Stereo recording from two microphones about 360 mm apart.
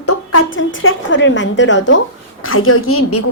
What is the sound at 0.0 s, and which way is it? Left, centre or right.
A woman's voice, left.